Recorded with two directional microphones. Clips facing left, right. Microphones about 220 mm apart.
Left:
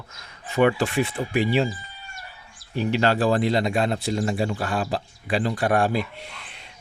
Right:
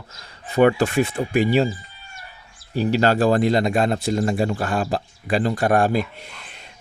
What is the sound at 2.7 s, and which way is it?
Speech, 40° right (ahead or behind).